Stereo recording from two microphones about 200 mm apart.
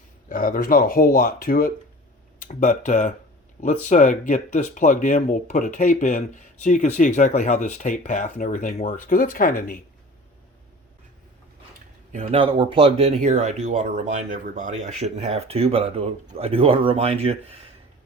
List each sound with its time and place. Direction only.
0.3 s speech: 40° left (ahead or behind)
12.1 s speech: 30° right (ahead or behind)